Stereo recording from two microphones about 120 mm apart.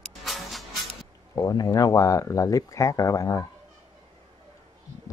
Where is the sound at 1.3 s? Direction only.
30° left (ahead or behind).